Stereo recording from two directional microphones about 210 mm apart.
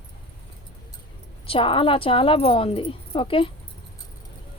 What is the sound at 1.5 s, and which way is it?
A woman's voice, 25° left (ahead or behind).